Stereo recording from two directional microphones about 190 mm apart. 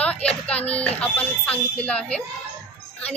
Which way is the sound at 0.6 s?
30° left (ahead or behind).